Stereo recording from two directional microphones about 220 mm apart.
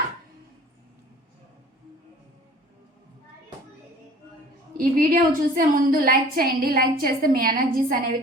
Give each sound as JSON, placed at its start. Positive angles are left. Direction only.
{"t": 4.8, "sound": "a woman's voice", "side_deg": -40}